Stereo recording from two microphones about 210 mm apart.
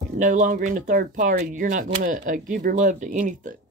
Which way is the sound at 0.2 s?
40° right (ahead or behind).